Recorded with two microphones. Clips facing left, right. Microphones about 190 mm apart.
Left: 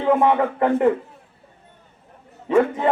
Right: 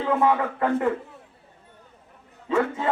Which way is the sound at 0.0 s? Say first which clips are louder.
Left 4 dB; 25° left (ahead or behind).